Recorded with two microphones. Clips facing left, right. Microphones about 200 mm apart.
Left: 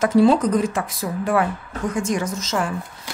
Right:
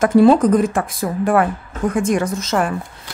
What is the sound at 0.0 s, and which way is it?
Speech, 50° right (ahead or behind).